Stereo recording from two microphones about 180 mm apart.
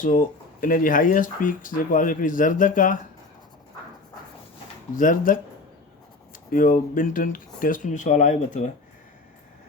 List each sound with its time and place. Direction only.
0.0 s speech: 50° left (ahead or behind)
4.9 s speech: 50° left (ahead or behind)
6.5 s speech: 50° left (ahead or behind)